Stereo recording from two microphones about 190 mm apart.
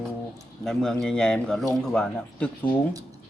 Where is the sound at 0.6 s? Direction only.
Centre (ahead or behind).